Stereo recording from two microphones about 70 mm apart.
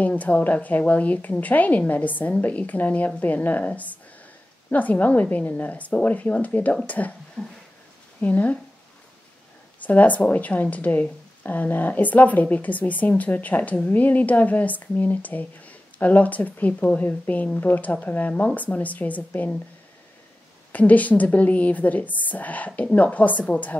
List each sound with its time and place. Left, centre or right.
0.0 s a woman's voice: left
7.4 s a sound: centre
8.2 s a woman's voice: left
9.8 s a woman's voice: left
20.7 s a woman's voice: left